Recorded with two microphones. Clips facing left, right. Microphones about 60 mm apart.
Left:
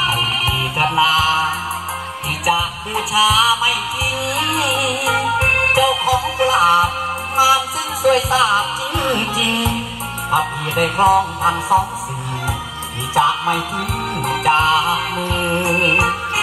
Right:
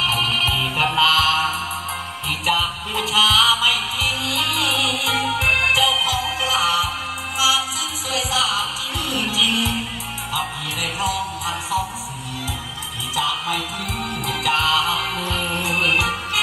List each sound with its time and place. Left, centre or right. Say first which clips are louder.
0.1 s music: left 2 dB; centre
2.4 s music: left 4 dB; centre; by 11.1 s left
13.1 s music: left 8 dB; left